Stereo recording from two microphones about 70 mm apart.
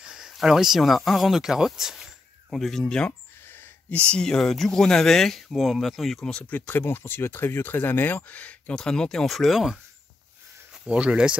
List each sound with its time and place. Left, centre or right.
0.0 s speech: centre
3.1 s a sound: left
4.0 s speech: centre
6.4 s speech: left
8.7 s speech: centre
10.9 s speech: centre